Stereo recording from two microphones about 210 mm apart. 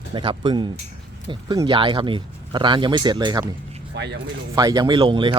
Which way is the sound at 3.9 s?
55° right (ahead or behind).